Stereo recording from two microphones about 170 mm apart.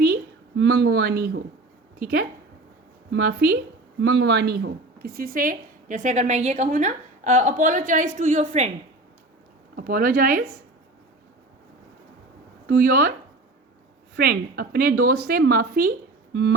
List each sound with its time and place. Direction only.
0.0 s a woman's voice: 80° right
4.0 s speech: 90° right; by 8.7 s 45° right (ahead or behind)
9.7 s a woman's voice: 60° right (ahead or behind)
12.6 s a woman's voice: 60° right (ahead or behind)
14.2 s a woman's voice: 65° right (ahead or behind)
16.3 s speech: 90° right